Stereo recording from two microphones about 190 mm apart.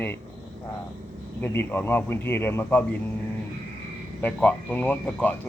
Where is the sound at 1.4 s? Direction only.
10° left (ahead or behind).